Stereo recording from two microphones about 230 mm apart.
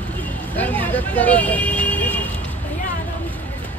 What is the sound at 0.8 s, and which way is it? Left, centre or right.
Speech, centre.